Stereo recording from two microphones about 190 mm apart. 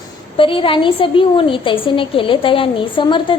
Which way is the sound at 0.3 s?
25° left (ahead or behind).